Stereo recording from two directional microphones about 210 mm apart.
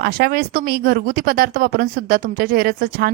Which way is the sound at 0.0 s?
45° right (ahead or behind).